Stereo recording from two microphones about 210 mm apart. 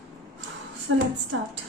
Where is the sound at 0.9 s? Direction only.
65° right (ahead or behind).